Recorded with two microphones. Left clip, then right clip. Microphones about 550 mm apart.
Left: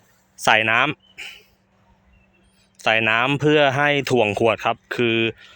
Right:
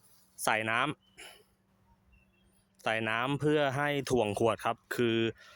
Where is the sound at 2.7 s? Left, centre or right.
Right.